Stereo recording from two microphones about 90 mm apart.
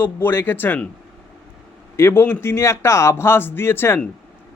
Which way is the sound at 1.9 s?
30° left (ahead or behind).